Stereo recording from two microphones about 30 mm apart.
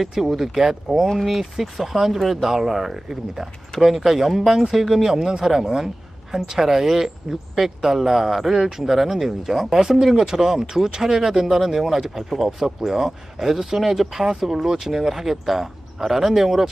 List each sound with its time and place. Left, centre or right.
0.0 s speech: centre